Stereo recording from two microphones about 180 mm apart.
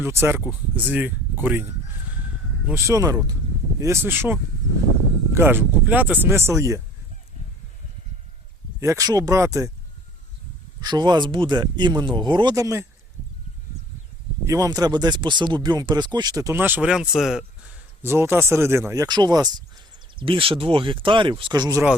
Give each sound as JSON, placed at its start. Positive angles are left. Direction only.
{"t": 0.0, "sound": "speech", "side_deg": -15}
{"t": 2.6, "sound": "speech", "side_deg": -15}
{"t": 8.8, "sound": "speech", "side_deg": -15}
{"t": 10.8, "sound": "speech", "side_deg": -25}
{"t": 14.4, "sound": "speech", "side_deg": -20}
{"t": 18.0, "sound": "speech", "side_deg": -15}